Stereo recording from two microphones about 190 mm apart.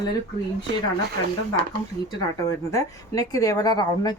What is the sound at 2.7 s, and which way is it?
A woman's voice, 15° left (ahead or behind).